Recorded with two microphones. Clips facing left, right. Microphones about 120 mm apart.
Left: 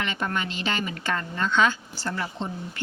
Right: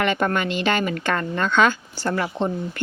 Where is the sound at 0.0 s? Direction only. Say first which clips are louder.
Right 7 dB; 60° right (ahead or behind).